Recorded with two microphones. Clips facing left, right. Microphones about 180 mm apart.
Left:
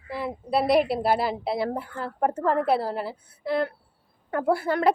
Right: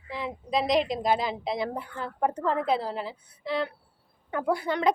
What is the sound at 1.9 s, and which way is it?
Speech, 40° left (ahead or behind).